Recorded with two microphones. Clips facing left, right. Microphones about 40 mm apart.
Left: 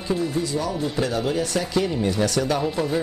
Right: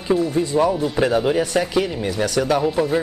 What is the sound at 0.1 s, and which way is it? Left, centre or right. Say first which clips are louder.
Speech: right 6 dB; right.